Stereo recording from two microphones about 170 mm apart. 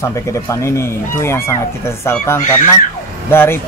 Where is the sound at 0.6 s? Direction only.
15° left (ahead or behind).